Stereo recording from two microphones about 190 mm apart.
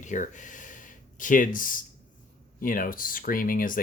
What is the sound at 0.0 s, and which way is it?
Speech, 40° left (ahead or behind).